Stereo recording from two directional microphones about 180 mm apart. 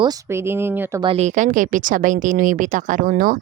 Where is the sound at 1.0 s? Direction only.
35° right (ahead or behind).